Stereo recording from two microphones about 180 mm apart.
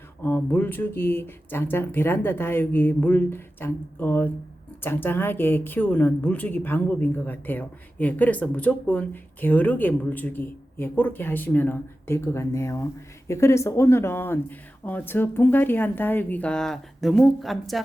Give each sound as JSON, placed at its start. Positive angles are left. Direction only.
{"t": 0.2, "sound": "speech", "side_deg": 10}